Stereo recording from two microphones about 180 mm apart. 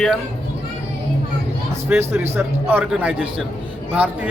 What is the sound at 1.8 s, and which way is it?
A man's voice, 10° right (ahead or behind).